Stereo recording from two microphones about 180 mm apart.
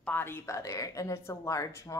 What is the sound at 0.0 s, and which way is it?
A woman's voice, 10° left (ahead or behind).